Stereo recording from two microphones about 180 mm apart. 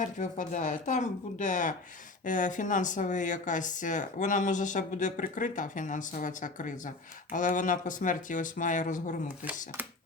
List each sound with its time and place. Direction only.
0.0 s speech: 45° left (ahead or behind)
9.4 s speech: 10° right (ahead or behind)